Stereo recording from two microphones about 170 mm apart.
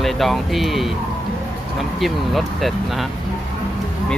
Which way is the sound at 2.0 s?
Centre (ahead or behind).